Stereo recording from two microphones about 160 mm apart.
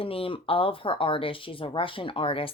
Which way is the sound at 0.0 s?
35° left (ahead or behind).